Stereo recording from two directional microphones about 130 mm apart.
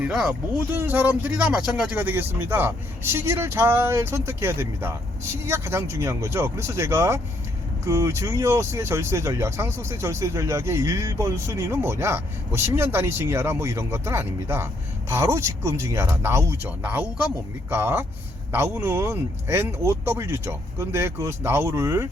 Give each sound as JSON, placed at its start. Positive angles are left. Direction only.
{"t": 0.0, "sound": "speech", "side_deg": -5}
{"t": 0.7, "sound": "speech", "side_deg": -15}